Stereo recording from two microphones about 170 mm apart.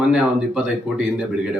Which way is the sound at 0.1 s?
5° right (ahead or behind).